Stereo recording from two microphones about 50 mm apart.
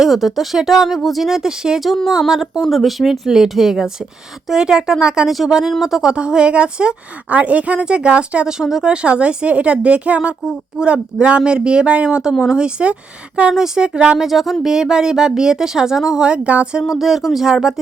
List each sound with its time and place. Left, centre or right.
0.0 s a woman's voice: centre; by 13.5 s right
13.5 s speech: centre
14.3 s speech: centre; by 16.6 s right
16.9 s speech: centre